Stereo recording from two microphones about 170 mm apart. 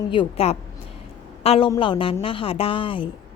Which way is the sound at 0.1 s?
35° left (ahead or behind).